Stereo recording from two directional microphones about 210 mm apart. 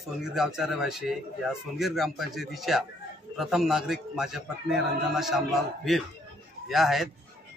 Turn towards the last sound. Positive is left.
turn(degrees=0)  # may be behind; listen again after turning